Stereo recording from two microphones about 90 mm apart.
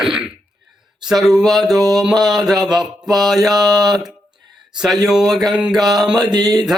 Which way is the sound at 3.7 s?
50° right (ahead or behind).